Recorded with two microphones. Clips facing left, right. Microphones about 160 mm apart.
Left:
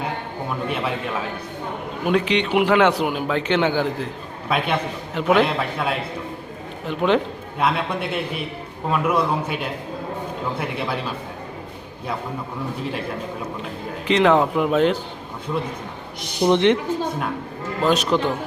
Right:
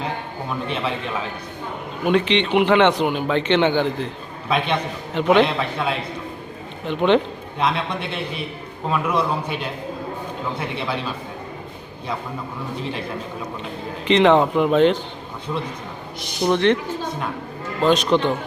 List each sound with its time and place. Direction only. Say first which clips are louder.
2.0 s a man's voice: right 1 dB; 5° left (ahead or behind)
14.1 s a man's voice: right 2 dB; centre (ahead or behind)
16.4 s speech: left 1 dB; 20° left (ahead or behind)
17.8 s a man's voice: right 2 dB; 10° left (ahead or behind)